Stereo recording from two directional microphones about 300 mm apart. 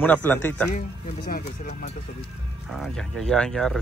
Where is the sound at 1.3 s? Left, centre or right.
Left.